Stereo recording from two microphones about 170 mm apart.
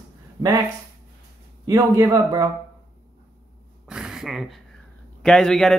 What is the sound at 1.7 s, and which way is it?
Speech, 20° right (ahead or behind).